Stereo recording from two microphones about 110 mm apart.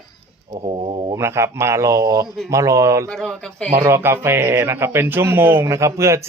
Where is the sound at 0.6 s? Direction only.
55° right (ahead or behind).